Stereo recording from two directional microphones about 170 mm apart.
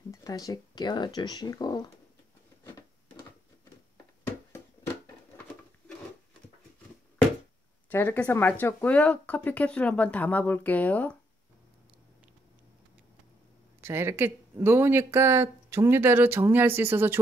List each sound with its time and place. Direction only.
0.1 s speech: 20° left (ahead or behind)
7.9 s speech: 10° left (ahead or behind)
13.7 s speech: 15° right (ahead or behind)